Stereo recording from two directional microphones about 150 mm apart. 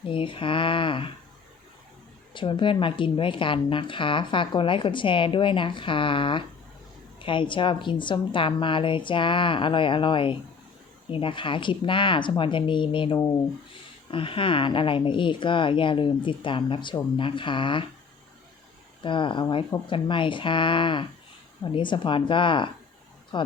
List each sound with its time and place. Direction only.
0.0 s speech: 35° left (ahead or behind)
2.3 s speech: 35° left (ahead or behind)
19.0 s speech: 35° left (ahead or behind)